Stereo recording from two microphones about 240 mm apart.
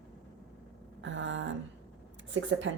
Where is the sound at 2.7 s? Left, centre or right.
Right.